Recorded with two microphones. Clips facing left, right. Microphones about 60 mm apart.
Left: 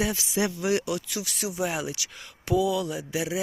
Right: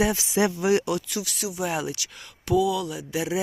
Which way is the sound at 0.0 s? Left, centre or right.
Right.